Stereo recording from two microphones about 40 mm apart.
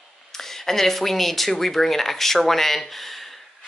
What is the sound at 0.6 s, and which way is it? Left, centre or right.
Speech, centre.